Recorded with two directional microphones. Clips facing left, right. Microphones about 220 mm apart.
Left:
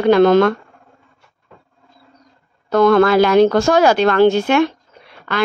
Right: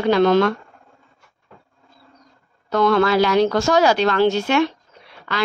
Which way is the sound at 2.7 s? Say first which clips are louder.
Left 5 dB; 50° left (ahead or behind).